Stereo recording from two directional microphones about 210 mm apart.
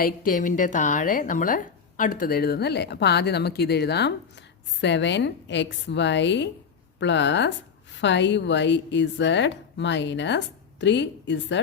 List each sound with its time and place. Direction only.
0.0 s a woman's voice: 40° left (ahead or behind); by 11.6 s 55° left (ahead or behind)